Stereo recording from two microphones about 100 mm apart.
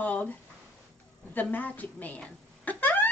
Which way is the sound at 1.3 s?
15° left (ahead or behind).